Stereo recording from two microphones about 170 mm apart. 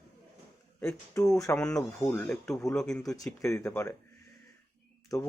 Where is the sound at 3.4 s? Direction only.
15° left (ahead or behind).